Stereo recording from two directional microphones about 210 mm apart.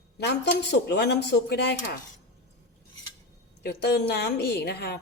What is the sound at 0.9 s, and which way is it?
Speech, 50° left (ahead or behind).